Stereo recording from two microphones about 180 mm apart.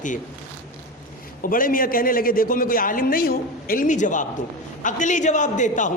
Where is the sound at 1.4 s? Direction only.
50° left (ahead or behind).